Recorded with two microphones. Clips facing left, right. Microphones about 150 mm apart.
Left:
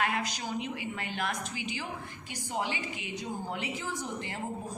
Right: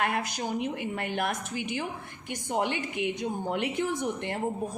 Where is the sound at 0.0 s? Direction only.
55° right (ahead or behind).